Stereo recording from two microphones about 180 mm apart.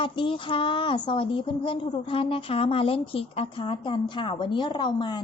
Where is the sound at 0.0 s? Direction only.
30° left (ahead or behind).